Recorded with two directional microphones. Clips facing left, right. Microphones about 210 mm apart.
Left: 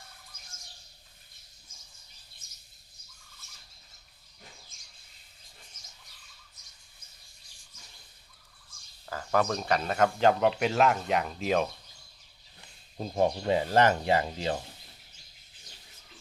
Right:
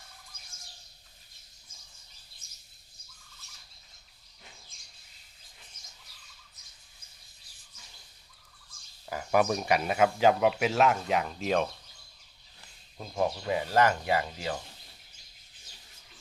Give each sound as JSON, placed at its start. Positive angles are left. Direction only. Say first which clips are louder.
{"t": 9.0, "sound": "speech", "louder": "right 2 dB", "side_deg": -15}
{"t": 13.0, "sound": "speech", "louder": "left 3 dB", "side_deg": 35}